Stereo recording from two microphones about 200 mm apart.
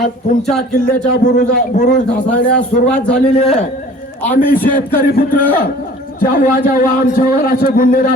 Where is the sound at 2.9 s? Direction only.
5° left (ahead or behind).